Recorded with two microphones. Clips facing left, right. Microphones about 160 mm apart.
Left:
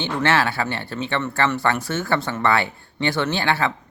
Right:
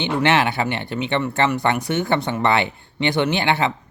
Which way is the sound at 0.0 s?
15° right (ahead or behind).